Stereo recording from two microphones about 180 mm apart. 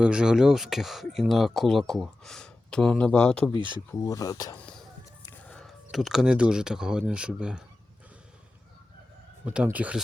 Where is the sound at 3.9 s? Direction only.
15° left (ahead or behind).